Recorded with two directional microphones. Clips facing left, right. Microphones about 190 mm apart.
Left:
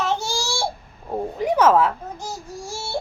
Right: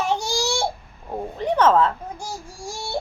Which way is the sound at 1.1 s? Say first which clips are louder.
Left 2 dB; 10° left (ahead or behind).